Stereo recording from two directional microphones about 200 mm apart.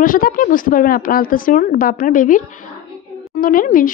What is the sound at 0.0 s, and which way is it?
A woman's voice, 45° left (ahead or behind).